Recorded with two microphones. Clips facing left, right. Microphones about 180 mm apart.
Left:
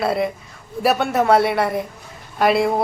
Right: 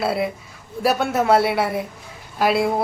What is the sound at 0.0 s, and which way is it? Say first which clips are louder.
A man's voice: left 2 dB; 5° right (ahead or behind).